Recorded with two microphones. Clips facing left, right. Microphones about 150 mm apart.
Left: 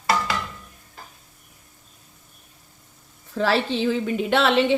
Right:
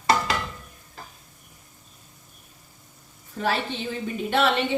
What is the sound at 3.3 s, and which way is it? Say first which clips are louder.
A woman's voice: left 5 dB; 90° left.